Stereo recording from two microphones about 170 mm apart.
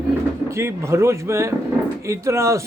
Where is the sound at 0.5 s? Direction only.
15° right (ahead or behind).